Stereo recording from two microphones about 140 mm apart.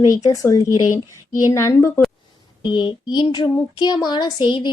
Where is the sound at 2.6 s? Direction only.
35° left (ahead or behind).